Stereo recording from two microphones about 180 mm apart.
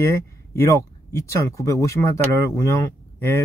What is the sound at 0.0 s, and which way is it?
Speech, 15° left (ahead or behind).